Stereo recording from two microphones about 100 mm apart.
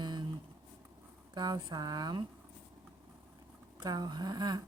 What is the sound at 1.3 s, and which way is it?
Speech, 45° right (ahead or behind).